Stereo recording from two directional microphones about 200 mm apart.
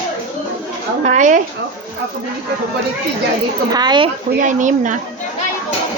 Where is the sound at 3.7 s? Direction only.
20° right (ahead or behind).